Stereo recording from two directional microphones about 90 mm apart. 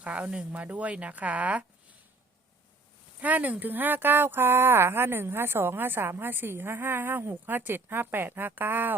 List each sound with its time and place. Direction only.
0.0 s speech: 15° right (ahead or behind)
3.2 s speech: 15° right (ahead or behind)